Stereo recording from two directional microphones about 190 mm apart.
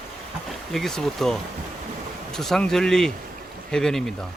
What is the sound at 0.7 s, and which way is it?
Speech, centre (ahead or behind).